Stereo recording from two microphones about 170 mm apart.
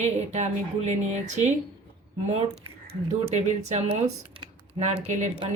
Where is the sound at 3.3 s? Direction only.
40° right (ahead or behind).